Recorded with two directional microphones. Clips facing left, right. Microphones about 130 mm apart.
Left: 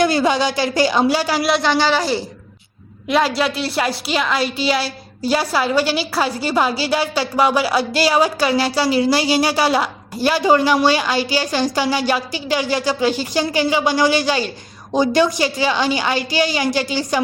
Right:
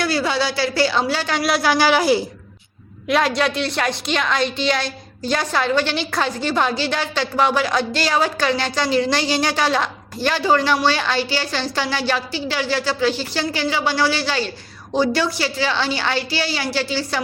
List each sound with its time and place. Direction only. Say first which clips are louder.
0.0 s a woman's voice: left 4 dB; 20° left (ahead or behind)
1.4 s a woman's voice: left 1 dB; centre (ahead or behind)
3.1 s a woman's voice: left 1 dB; centre (ahead or behind)